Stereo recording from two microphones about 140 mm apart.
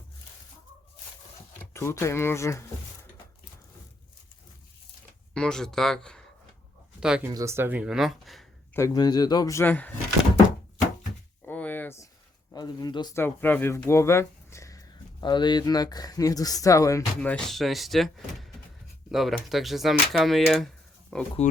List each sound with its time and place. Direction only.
1.7 s speech: 20° left (ahead or behind)
5.3 s speech: 5° left (ahead or behind)
7.0 s speech: 5° right (ahead or behind)
7.3 s speech: 20° right (ahead or behind); by 8.4 s centre (ahead or behind)
8.7 s speech: 20° left (ahead or behind)
11.4 s a sound: 10° left (ahead or behind)
12.5 s speech: 30° left (ahead or behind)
13.1 s speech: 15° left (ahead or behind)
15.2 s speech: 30° left (ahead or behind)
17.2 s speech: 5° left (ahead or behind)